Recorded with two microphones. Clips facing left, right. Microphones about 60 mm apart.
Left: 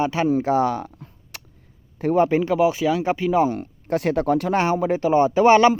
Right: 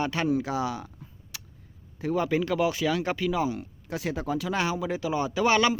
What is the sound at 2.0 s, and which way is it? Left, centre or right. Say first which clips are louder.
Speech: left 8 dB; left.